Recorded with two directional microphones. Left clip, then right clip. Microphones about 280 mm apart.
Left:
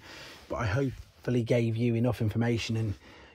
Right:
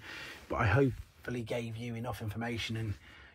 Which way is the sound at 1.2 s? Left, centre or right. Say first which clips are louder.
Left 9 dB; left.